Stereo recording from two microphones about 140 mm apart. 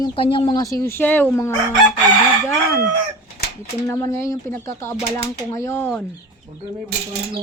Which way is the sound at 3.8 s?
20° left (ahead or behind).